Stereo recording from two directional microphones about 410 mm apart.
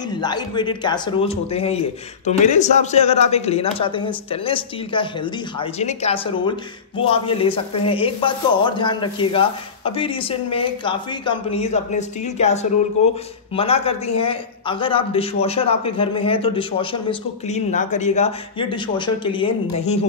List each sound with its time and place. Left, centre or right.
0.2 s a man's voice: centre